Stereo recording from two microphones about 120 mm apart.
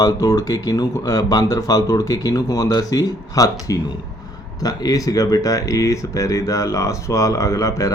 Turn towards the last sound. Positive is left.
turn(degrees=30)  # may be behind; listen again after turning